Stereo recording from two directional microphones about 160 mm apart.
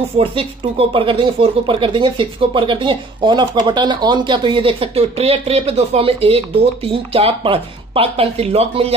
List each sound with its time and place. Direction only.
0.2 s speech: 35° right (ahead or behind)